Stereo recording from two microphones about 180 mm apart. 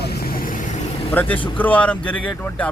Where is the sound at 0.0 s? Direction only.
60° left (ahead or behind).